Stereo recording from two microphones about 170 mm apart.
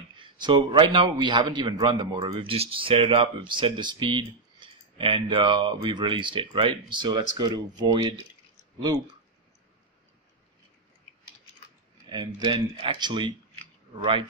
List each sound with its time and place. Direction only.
0.2 s a man's voice: 25° right (ahead or behind)
12.1 s a man's voice: 25° right (ahead or behind)